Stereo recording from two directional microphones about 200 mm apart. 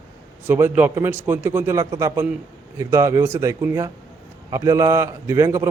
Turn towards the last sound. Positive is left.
turn(degrees=-15)  # may be behind; listen again after turning